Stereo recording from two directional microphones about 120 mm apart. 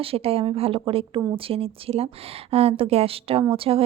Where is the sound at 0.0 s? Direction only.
55° right (ahead or behind).